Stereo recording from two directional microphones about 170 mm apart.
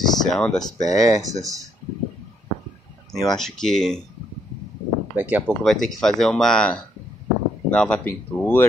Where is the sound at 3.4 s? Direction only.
Centre (ahead or behind).